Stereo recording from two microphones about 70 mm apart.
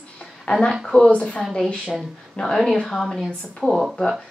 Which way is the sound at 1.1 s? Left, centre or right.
Centre.